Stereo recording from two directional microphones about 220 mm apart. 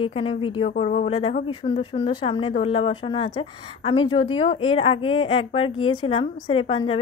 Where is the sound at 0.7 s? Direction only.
35° left (ahead or behind).